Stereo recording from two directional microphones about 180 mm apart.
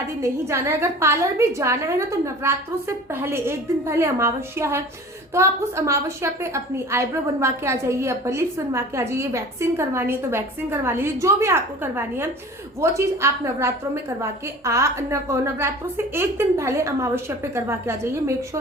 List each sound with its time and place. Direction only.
0.2 s a woman's voice: 15° right (ahead or behind)